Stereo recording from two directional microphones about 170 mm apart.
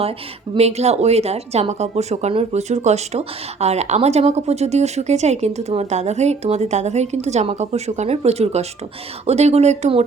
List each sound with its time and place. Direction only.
0.5 s speech: 40° right (ahead or behind)